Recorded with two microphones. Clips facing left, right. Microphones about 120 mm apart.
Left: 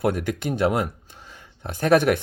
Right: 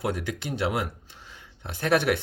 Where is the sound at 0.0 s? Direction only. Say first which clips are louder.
Left 6 dB; 55° left (ahead or behind).